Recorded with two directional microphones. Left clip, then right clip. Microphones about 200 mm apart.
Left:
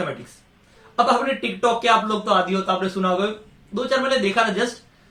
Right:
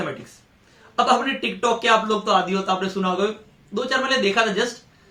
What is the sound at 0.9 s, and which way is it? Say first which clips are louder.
Speech: even; 20° right (ahead or behind).